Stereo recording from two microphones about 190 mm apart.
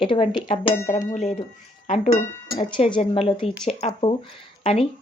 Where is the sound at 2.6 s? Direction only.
25° left (ahead or behind).